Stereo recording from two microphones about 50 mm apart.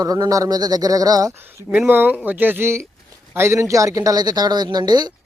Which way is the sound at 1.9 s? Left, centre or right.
Right.